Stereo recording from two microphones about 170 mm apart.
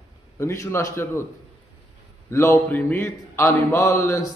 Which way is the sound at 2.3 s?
15° left (ahead or behind).